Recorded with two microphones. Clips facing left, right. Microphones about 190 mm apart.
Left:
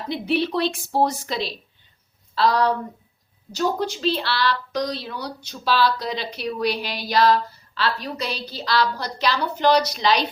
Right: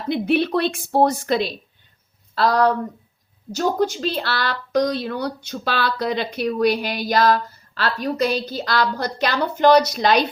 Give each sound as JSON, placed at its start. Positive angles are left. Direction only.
{"t": 0.1, "sound": "a woman's voice", "side_deg": -55}